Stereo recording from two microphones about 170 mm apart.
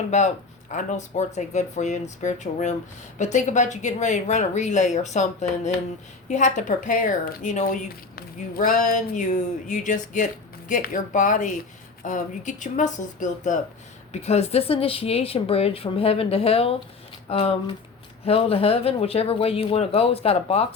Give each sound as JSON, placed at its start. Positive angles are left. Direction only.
{"t": 0.1, "sound": "a woman's voice", "side_deg": 40}